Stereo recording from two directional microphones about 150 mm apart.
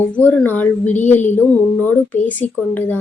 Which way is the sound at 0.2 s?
10° left (ahead or behind).